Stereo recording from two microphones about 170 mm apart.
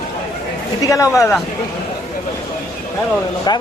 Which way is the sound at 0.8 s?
20° left (ahead or behind).